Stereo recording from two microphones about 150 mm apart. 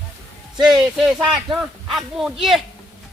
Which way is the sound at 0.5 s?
25° right (ahead or behind).